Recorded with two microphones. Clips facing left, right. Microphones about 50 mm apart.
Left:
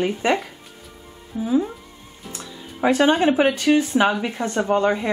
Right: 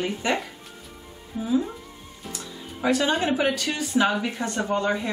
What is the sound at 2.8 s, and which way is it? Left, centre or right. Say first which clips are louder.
Speech: left 6 dB; left.